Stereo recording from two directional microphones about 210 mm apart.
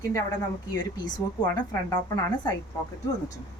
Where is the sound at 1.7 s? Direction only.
20° left (ahead or behind).